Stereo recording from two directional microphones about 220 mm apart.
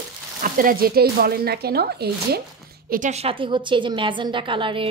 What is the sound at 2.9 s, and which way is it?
Speech, 35° right (ahead or behind).